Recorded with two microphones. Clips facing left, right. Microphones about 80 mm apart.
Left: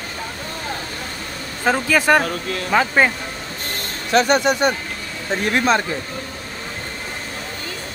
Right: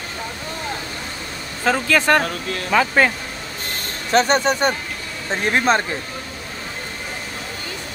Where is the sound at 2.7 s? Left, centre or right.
Left.